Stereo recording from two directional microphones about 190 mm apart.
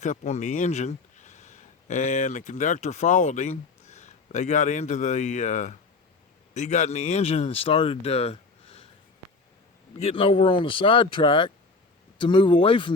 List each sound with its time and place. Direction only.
0.0 s speech: 40° left (ahead or behind)
9.9 s speech: 30° left (ahead or behind)